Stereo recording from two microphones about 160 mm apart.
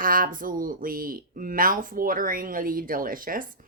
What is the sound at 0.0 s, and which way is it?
Speech, 60° right (ahead or behind).